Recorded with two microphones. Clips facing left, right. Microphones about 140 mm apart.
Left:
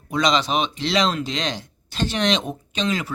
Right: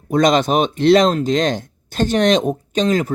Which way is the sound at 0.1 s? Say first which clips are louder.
Right 6 dB; 50° right (ahead or behind).